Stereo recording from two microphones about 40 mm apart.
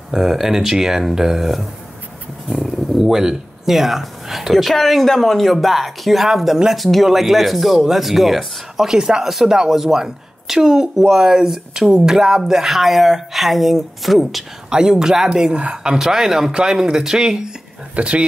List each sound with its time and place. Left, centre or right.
0.1 s speech: centre
2.5 s speech: centre
14.7 s speech: centre
16.0 s speech: centre
16.9 s speech: centre
17.2 s speech: centre